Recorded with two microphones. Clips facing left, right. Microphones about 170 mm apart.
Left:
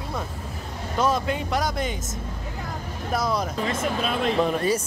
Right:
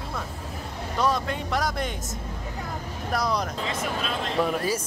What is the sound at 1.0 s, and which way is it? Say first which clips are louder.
Speech: left 2 dB; centre (ahead or behind).